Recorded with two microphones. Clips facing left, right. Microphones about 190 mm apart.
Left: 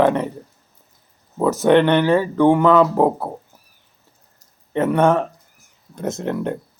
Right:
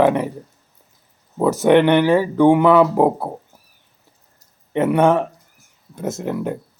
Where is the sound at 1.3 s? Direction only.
15° right (ahead or behind).